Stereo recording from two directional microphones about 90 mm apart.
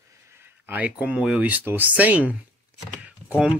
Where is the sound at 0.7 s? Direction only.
20° right (ahead or behind).